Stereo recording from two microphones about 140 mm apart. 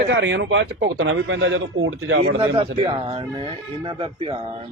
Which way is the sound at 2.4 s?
40° right (ahead or behind).